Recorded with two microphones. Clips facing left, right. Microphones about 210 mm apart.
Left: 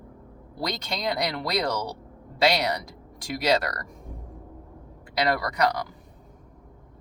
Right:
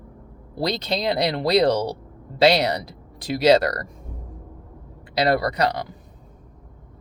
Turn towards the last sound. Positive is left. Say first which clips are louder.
# right 4 dB
turn(degrees=-30)  # may be behind; listen again after turning